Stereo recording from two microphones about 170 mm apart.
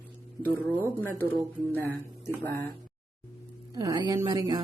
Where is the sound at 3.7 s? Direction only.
20° right (ahead or behind).